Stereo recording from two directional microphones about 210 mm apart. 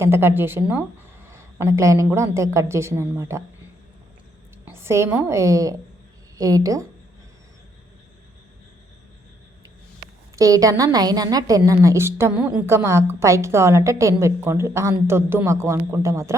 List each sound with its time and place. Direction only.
0.0 s a woman's voice: 10° right (ahead or behind)
4.6 s a woman's voice: 10° right (ahead or behind)
10.3 s a woman's voice: 15° right (ahead or behind)